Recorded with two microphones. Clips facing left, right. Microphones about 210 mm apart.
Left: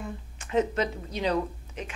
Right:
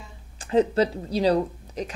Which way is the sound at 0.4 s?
35° right (ahead or behind).